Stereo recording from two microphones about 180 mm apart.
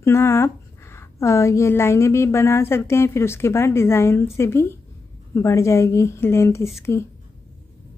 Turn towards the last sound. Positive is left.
turn(degrees=15)  # may be behind; listen again after turning